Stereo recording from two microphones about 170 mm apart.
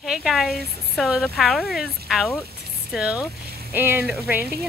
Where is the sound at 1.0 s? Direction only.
Centre (ahead or behind).